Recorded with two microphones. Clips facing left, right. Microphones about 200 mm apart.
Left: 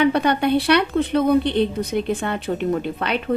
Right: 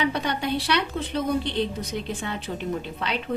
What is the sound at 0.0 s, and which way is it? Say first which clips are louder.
A woman's voice: left 8 dB; 60° left (ahead or behind).